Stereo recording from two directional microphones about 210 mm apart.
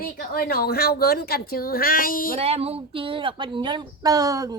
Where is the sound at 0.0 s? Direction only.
45° left (ahead or behind).